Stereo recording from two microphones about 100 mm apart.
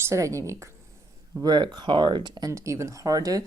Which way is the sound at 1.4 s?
45° right (ahead or behind).